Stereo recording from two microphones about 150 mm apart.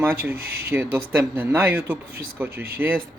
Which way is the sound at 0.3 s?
90° right.